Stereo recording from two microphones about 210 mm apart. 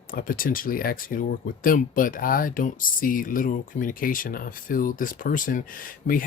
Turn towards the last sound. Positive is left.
turn(degrees=35)  # may be behind; listen again after turning